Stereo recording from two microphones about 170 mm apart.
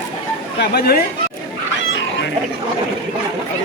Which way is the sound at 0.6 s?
65° left (ahead or behind).